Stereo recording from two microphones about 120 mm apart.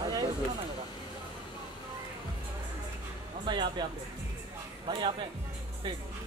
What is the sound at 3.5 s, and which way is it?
Music, 40° right (ahead or behind).